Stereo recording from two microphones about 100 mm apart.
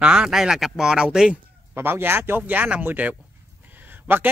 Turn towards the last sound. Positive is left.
turn(degrees=-20)  # may be behind; listen again after turning